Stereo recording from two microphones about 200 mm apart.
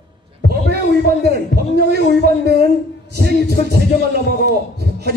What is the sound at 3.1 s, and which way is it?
Speech, 50° right (ahead or behind).